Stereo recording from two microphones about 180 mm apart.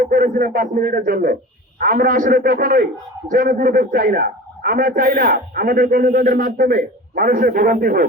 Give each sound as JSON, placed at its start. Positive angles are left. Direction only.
{"t": 0.0, "sound": "a man's voice", "side_deg": -50}